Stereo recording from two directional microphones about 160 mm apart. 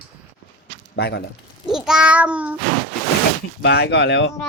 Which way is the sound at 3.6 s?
90° left.